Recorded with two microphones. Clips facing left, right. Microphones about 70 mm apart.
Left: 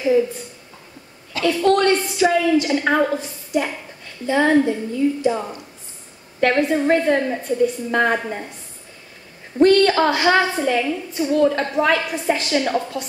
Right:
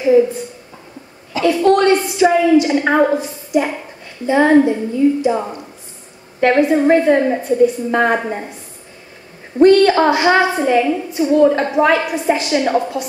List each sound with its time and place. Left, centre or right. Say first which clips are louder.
0.0 s a sound: right 5 dB; right
1.4 s a woman's voice: right 4 dB; centre
9.6 s a woman's voice: right 4 dB; right